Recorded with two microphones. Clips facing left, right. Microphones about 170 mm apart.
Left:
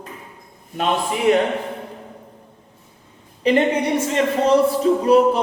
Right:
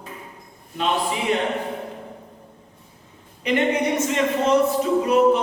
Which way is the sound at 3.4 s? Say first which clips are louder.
Left 3 dB; 30° left (ahead or behind).